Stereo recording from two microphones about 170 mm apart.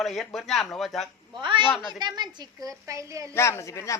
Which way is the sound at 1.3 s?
30° right (ahead or behind).